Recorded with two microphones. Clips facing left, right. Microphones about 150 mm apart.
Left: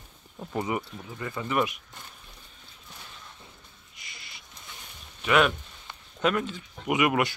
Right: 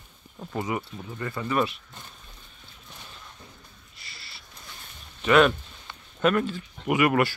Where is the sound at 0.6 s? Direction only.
20° left (ahead or behind).